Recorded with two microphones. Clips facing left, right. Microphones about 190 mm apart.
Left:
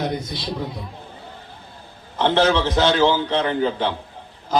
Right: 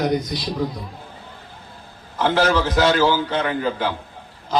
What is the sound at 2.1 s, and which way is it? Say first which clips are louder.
A man's voice: left 1 dB; 30° left (ahead or behind).